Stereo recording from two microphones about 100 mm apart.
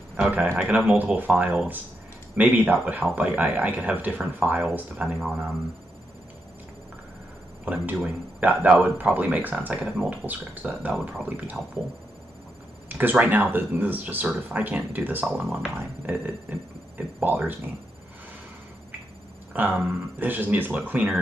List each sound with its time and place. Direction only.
0.1 s speech: 10° right (ahead or behind)
7.6 s speech: 15° right (ahead or behind)
12.8 s speech: 15° right (ahead or behind)
19.6 s speech: 15° right (ahead or behind)